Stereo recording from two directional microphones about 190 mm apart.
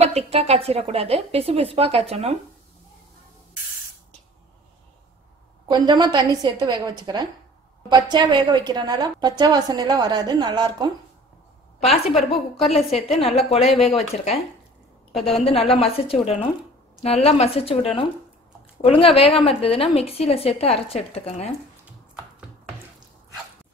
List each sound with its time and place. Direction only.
0.0 s a woman's voice: 35° right (ahead or behind)
5.7 s a woman's voice: 20° right (ahead or behind)
11.9 s a woman's voice: centre (ahead or behind)
12.6 s a woman's voice: 30° left (ahead or behind)
13.1 s a woman's voice: centre (ahead or behind)
14.1 s a woman's voice: 35° left (ahead or behind)
15.4 s a woman's voice: 30° left (ahead or behind)